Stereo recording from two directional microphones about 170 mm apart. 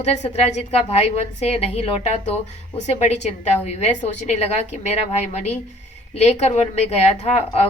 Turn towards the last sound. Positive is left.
turn(degrees=40)  # may be behind; listen again after turning